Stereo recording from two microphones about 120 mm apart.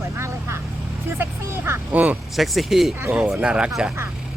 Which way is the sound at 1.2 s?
20° right (ahead or behind).